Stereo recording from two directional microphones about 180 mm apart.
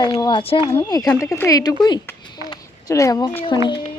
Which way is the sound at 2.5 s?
20° left (ahead or behind).